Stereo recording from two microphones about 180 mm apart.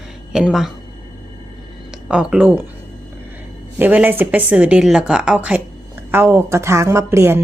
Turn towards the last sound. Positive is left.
turn(degrees=-15)  # may be behind; listen again after turning